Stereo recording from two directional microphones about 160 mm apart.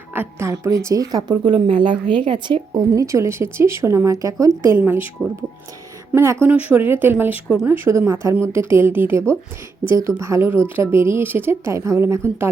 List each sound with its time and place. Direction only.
0.1 s a woman's voice: 15° right (ahead or behind)